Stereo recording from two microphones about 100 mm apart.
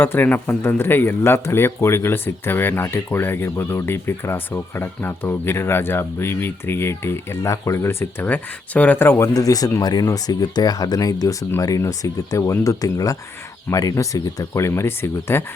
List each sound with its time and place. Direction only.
0.0 s speech: 20° left (ahead or behind)
9.3 s speech: 40° left (ahead or behind)